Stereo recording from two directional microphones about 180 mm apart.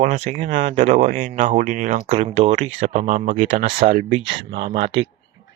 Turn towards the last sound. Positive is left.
turn(degrees=-35)  # may be behind; listen again after turning